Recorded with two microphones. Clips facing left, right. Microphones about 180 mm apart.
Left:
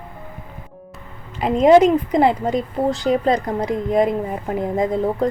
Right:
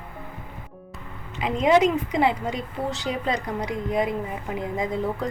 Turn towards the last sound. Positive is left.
turn(degrees=45)  # may be behind; listen again after turning